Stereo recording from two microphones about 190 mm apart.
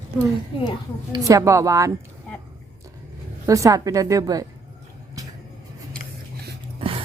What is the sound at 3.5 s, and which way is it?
Speech, 15° right (ahead or behind).